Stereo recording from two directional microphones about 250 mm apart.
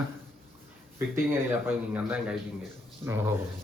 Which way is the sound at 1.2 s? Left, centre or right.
Centre.